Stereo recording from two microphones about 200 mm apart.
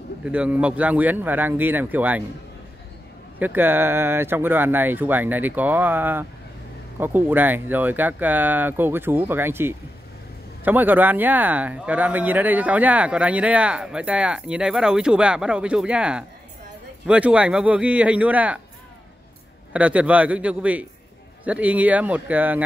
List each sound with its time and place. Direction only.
0.2 s speech: 5° right (ahead or behind)
3.3 s speech: 10° right (ahead or behind)
19.7 s speech: 5° right (ahead or behind)